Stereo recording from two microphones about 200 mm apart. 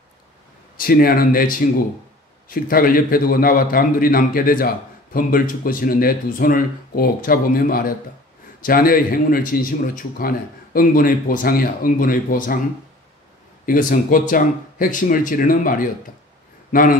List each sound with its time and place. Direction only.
0.7 s a man's voice: 45° left (ahead or behind)
13.7 s a man's voice: 45° left (ahead or behind)